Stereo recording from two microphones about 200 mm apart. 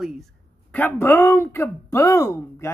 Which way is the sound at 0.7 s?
10° left (ahead or behind).